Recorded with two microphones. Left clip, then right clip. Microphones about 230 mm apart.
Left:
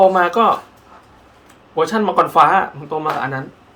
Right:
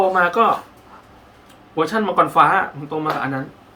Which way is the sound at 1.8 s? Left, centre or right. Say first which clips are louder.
Left 2 dB; left.